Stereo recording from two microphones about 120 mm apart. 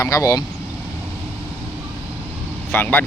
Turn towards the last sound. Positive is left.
turn(degrees=20)  # may be behind; listen again after turning